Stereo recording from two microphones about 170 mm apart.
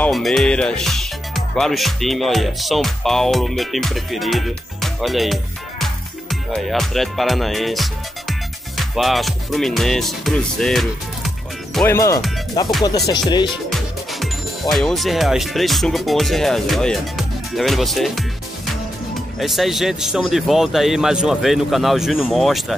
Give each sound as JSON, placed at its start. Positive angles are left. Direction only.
{"t": 0.0, "sound": "speech", "side_deg": 0}
{"t": 11.8, "sound": "speech", "side_deg": 15}
{"t": 12.8, "sound": "music", "side_deg": 25}
{"t": 13.7, "sound": "speech", "side_deg": 0}
{"t": 19.4, "sound": "speech", "side_deg": 0}